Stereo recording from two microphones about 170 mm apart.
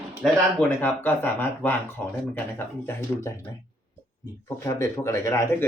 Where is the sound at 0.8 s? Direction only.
10° left (ahead or behind).